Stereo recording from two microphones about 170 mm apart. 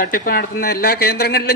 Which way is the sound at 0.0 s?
55° left (ahead or behind).